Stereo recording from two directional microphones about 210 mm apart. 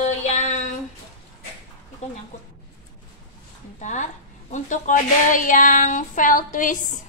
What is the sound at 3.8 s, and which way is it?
Speech, 35° left (ahead or behind).